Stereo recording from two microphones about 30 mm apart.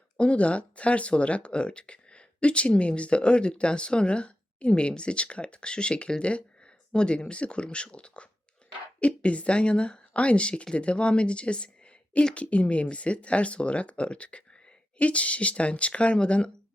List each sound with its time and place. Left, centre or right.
0.2 s speech: left
16.1 s speech: left